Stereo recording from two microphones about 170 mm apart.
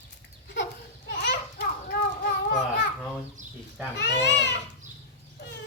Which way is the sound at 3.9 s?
90° left.